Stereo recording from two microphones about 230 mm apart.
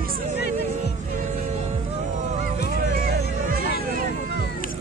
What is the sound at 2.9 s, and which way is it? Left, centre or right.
Music, right.